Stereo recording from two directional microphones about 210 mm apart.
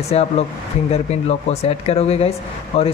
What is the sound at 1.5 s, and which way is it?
Speech, 30° left (ahead or behind).